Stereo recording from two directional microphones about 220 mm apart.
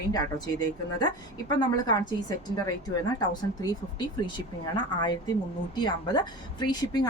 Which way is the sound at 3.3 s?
20° left (ahead or behind).